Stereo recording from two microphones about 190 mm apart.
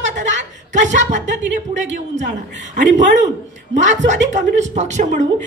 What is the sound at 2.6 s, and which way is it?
Speech, 40° right (ahead or behind).